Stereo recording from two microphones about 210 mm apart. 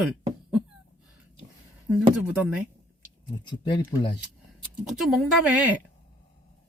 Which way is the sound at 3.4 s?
20° left (ahead or behind).